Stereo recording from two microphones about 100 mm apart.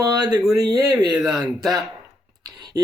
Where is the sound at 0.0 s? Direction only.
40° right (ahead or behind).